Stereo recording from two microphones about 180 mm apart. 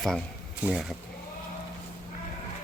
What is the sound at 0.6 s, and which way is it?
Speech, centre (ahead or behind).